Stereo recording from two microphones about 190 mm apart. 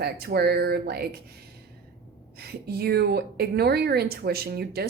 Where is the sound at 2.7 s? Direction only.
55° right (ahead or behind).